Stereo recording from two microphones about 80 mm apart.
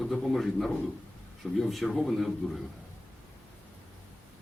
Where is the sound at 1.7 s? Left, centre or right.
Centre.